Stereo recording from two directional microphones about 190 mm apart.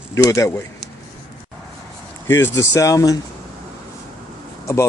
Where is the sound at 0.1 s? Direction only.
15° left (ahead or behind).